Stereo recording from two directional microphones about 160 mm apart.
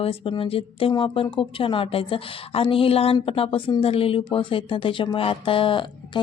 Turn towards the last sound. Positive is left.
turn(degrees=30)  # may be behind; listen again after turning